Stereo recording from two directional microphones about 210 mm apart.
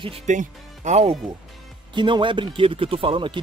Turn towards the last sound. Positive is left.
turn(degrees=-25)  # may be behind; listen again after turning